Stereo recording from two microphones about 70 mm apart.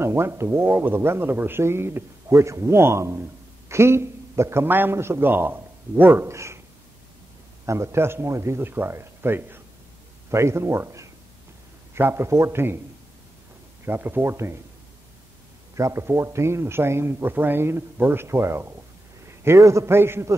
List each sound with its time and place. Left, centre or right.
0.0 s speech: right
6.2 s speech: right
7.6 s a man's voice: right
13.8 s speech: right
15.7 s speech: right